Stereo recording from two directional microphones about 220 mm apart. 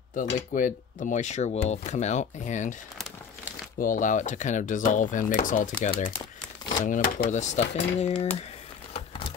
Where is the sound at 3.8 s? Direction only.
35° left (ahead or behind).